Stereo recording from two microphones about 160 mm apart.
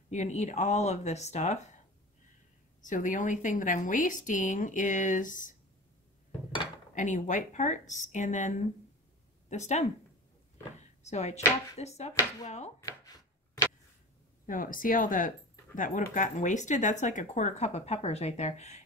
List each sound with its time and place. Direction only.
0.1 s speech: 45° left (ahead or behind)
2.8 s speech: 55° left (ahead or behind)
7.0 s speech: 50° left (ahead or behind)
12.1 s speech: 15° left (ahead or behind)
12.4 s speech: 45° left (ahead or behind)
12.8 s chopping: 20° left (ahead or behind)
14.4 s speech: 60° left (ahead or behind)